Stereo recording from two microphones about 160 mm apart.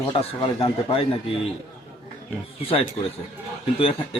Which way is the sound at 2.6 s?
35° left (ahead or behind).